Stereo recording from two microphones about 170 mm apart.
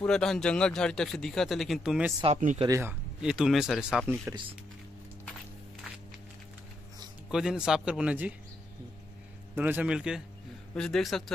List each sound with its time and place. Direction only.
0.0 s speech: 5° left (ahead or behind)
2.2 s speech: 40° right (ahead or behind)
2.6 s speech: 15° right (ahead or behind)
7.2 s speech: 5° right (ahead or behind)
9.6 s speech: 10° right (ahead or behind)